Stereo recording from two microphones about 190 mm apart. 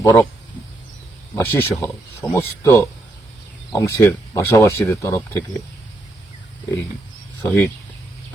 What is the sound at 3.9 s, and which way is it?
Speech, 15° left (ahead or behind).